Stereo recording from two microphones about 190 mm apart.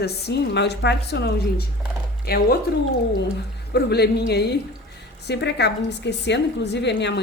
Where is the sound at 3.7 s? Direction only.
60° left (ahead or behind).